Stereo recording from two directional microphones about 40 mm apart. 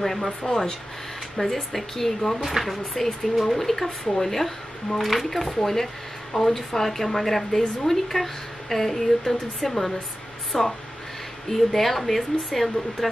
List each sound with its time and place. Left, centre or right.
0.0 s speech: centre
0.4 s speech: centre
1.4 s speech: centre